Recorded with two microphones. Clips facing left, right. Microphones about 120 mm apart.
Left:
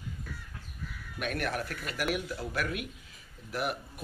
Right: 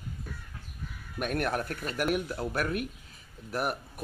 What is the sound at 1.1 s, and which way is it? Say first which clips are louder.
Speech: right 3 dB; 45° right (ahead or behind).